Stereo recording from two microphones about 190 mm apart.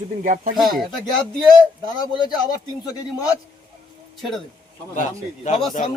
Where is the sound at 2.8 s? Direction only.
20° left (ahead or behind).